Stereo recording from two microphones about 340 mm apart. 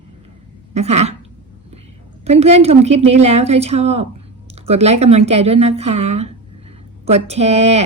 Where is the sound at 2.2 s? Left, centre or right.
Centre.